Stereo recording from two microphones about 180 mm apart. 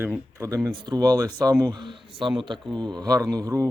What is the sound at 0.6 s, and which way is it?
Speech, 25° right (ahead or behind).